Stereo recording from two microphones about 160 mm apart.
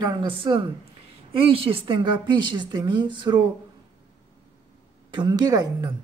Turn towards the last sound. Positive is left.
turn(degrees=-25)  # may be behind; listen again after turning